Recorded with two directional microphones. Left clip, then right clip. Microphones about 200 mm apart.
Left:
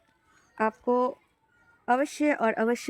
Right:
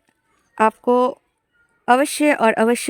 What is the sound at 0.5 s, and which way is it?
A woman's voice, 45° right (ahead or behind).